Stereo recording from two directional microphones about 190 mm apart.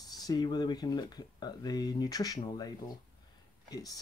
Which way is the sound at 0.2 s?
20° left (ahead or behind).